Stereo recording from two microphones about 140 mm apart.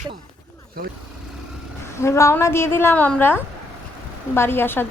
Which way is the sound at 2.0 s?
20° left (ahead or behind).